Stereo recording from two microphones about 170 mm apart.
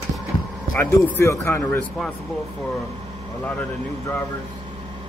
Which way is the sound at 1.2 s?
15° left (ahead or behind).